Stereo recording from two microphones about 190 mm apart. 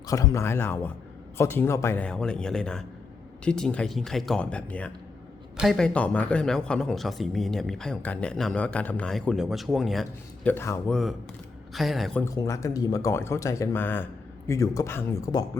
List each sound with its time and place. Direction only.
0.1 s speech: 15° left (ahead or behind)
11.7 s speech: centre (ahead or behind)
12.2 s speech: 15° left (ahead or behind)